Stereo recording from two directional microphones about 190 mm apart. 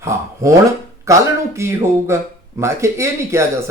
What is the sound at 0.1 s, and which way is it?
Speech, 15° right (ahead or behind).